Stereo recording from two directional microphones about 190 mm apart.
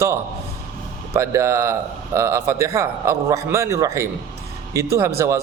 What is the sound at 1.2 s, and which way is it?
A man's voice, 15° right (ahead or behind).